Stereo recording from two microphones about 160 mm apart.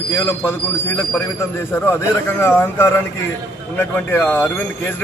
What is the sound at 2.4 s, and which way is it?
A man's voice, 15° left (ahead or behind).